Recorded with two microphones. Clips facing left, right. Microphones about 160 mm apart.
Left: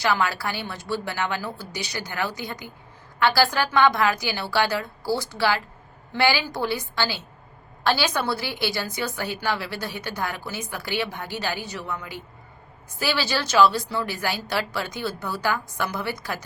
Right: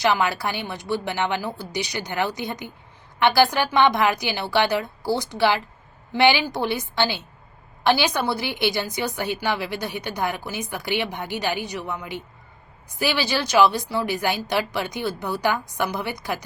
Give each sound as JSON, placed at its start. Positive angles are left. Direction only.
{"t": 0.0, "sound": "a woman's voice", "side_deg": -20}